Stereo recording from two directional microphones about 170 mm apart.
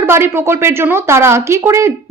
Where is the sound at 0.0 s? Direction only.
15° right (ahead or behind).